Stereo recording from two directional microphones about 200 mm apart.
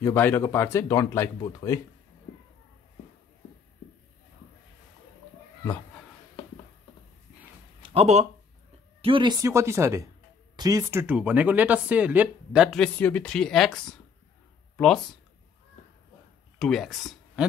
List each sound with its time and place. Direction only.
0.0 s speech: 10° left (ahead or behind)
7.8 s speech: 30° right (ahead or behind)
9.4 s speech: 15° right (ahead or behind); by 14.9 s 5° left (ahead or behind)
16.5 s speech: centre (ahead or behind)